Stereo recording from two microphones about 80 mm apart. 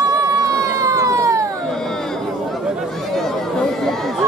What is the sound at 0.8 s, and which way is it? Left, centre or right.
Cat, right.